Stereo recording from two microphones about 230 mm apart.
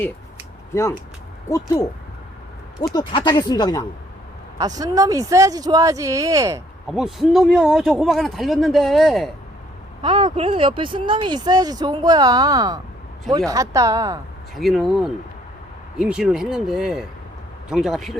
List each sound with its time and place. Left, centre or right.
0.7 s speech: centre
2.9 s speech: left
4.5 s speech: centre
6.8 s speech: centre
10.0 s speech: centre
14.5 s speech: centre